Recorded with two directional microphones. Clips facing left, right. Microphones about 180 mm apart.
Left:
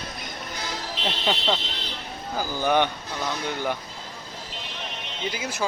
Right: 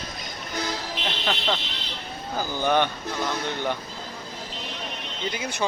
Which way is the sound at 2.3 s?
10° left (ahead or behind).